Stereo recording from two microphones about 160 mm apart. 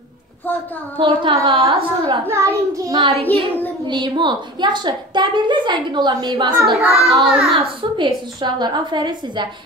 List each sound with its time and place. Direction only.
0.9 s a woman's voice: 30° right (ahead or behind)
2.2 s a woman's voice: 15° right (ahead or behind)
3.0 s a woman's voice: 40° right (ahead or behind)
7.1 s child singing: centre (ahead or behind)
8.0 s a woman's voice: 30° right (ahead or behind)